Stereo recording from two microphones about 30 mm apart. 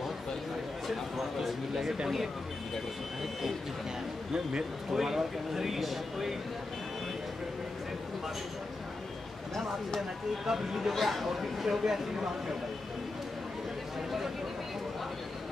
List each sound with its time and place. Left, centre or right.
0.8 s a sound: centre
4.3 s speech: right
4.9 s speech: centre
10.4 s speech: centre
10.9 s speech: centre